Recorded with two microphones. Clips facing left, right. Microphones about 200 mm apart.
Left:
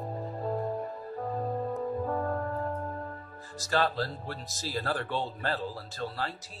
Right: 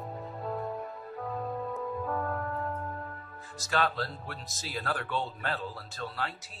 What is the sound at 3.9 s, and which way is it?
Speech, 30° left (ahead or behind).